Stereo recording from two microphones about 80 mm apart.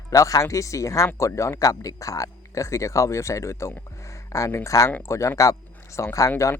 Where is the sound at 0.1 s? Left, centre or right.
Left.